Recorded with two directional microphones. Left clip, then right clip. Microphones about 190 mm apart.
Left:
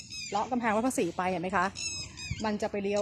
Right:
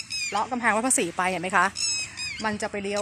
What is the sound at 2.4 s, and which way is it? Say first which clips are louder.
Speech: right 2 dB; centre (ahead or behind).